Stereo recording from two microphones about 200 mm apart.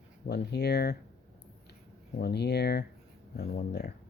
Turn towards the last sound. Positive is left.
turn(degrees=50)  # may be behind; listen again after turning